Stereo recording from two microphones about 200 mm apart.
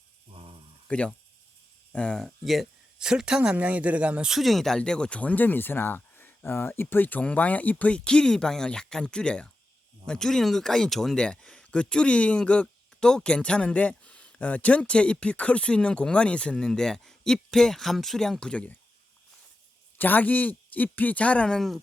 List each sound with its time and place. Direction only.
0.3 s a sound: 30° right (ahead or behind)
0.9 s speech: 5° left (ahead or behind)
20.0 s a man's voice: 10° left (ahead or behind)